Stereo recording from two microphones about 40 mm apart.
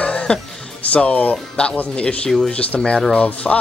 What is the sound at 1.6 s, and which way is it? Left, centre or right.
Speech, left.